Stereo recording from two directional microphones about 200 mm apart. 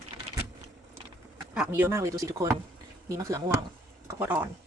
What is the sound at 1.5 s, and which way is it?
A woman's voice, 5° right (ahead or behind).